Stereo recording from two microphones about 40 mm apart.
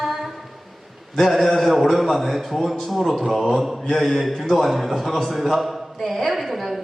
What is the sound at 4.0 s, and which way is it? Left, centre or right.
A man's voice, centre.